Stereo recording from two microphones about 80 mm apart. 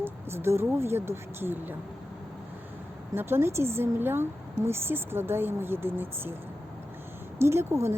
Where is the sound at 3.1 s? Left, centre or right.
Right.